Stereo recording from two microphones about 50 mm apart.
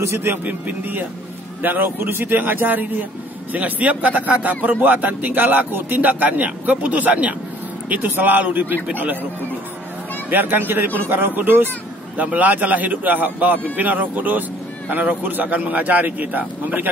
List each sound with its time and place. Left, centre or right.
0.0 s a man's voice: right
0.5 s a man's voice: right
10.3 s a man's voice: right